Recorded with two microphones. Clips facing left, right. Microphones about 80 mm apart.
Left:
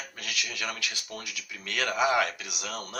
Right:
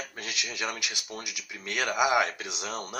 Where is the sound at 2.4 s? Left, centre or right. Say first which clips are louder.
Right 2 dB; right.